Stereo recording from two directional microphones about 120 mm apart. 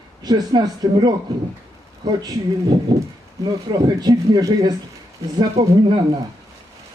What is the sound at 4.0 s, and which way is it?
Speech, 30° right (ahead or behind).